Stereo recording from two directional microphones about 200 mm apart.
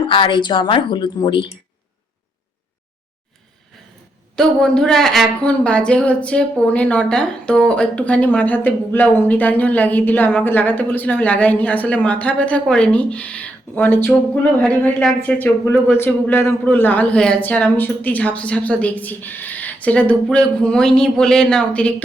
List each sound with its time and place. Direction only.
0.1 s a woman's voice: 25° left (ahead or behind)
4.4 s a woman's voice: 5° left (ahead or behind)